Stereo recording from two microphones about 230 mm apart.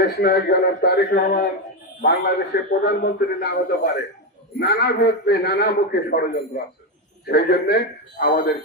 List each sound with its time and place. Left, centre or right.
0.0 s a man's voice: left